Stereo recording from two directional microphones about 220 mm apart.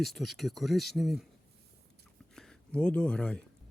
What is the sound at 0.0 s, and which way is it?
Speech, centre (ahead or behind).